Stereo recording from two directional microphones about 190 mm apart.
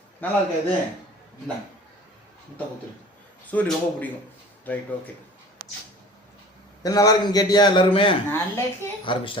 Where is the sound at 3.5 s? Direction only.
10° left (ahead or behind).